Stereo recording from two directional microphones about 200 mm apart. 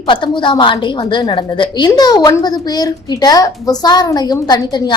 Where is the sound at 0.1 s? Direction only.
25° left (ahead or behind).